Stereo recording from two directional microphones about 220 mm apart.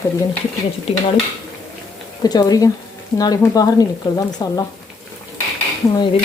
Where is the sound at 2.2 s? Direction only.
15° left (ahead or behind).